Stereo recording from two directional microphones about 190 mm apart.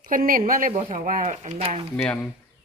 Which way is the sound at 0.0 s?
45° right (ahead or behind).